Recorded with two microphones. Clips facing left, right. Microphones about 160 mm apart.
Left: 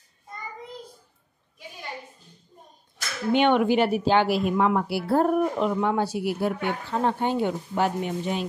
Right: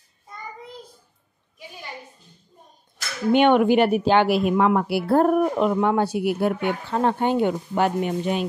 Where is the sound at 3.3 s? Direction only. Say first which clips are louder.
Right 4 dB; 50° right (ahead or behind).